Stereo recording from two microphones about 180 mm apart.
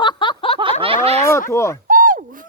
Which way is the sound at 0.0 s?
25° left (ahead or behind).